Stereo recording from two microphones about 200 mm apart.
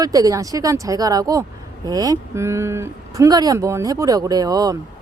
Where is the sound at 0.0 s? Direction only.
15° right (ahead or behind).